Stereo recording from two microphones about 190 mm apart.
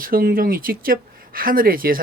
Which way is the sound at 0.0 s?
50° right (ahead or behind).